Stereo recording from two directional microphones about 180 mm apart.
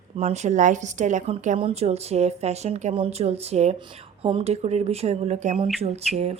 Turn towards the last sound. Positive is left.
turn(degrees=-35)  # may be behind; listen again after turning